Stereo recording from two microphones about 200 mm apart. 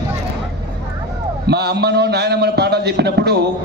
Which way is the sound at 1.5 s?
55° right (ahead or behind).